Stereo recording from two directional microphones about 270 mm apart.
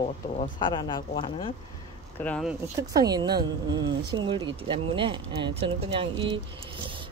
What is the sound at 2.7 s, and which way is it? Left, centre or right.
A woman's voice, centre.